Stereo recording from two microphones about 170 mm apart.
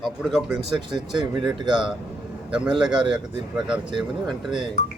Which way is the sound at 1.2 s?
25° right (ahead or behind).